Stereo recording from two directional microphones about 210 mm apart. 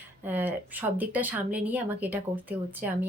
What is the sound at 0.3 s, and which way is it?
Speech, 10° right (ahead or behind).